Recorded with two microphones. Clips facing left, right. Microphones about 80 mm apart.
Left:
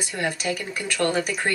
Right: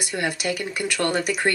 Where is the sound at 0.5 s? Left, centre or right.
Right.